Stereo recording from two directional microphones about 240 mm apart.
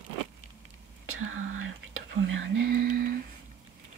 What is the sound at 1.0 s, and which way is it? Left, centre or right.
Speech, right.